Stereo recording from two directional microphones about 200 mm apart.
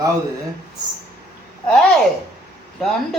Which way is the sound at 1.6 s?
5° left (ahead or behind).